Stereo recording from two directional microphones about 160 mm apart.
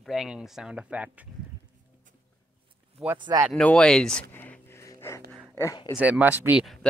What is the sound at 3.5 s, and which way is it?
Speech, 5° left (ahead or behind).